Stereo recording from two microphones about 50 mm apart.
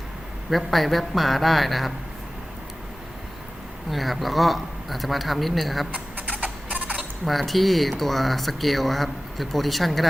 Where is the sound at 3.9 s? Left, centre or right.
Centre.